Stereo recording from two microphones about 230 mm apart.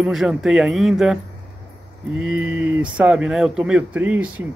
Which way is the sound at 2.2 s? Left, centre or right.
Centre.